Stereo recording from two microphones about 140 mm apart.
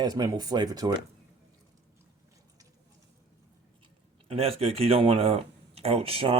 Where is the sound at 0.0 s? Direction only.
30° right (ahead or behind).